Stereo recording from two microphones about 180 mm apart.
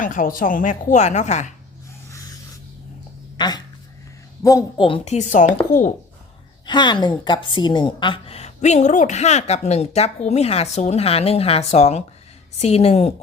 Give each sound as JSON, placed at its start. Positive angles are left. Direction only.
{"t": 0.0, "sound": "a woman's voice", "side_deg": 50}
{"t": 3.3, "sound": "a woman's voice", "side_deg": 25}
{"t": 4.9, "sound": "a woman's voice", "side_deg": 40}
{"t": 6.7, "sound": "a woman's voice", "side_deg": 25}